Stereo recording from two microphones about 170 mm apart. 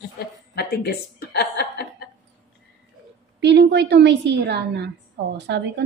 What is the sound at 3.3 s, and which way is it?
A woman's voice, 90° right.